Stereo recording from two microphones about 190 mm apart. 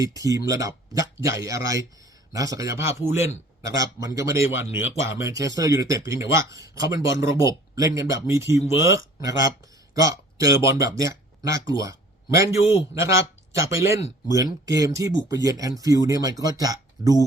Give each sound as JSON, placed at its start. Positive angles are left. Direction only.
{"t": 0.0, "sound": "speech", "side_deg": -20}